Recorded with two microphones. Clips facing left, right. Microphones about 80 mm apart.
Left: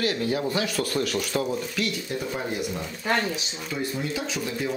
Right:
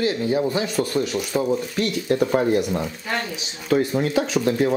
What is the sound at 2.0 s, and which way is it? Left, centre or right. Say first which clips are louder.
Speech: right 11 dB; right.